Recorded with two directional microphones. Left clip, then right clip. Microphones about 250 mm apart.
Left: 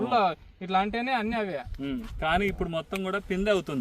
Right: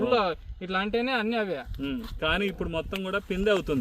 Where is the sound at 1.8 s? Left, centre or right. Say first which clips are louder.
Right 1 dB; centre.